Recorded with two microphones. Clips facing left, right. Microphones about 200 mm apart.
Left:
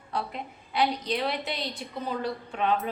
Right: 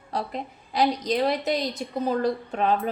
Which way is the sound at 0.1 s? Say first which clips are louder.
Right 3 dB; 40° right (ahead or behind).